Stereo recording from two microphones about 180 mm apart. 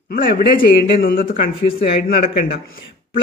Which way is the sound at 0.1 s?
55° left (ahead or behind).